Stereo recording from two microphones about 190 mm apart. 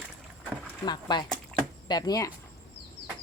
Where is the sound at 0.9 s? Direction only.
25° left (ahead or behind).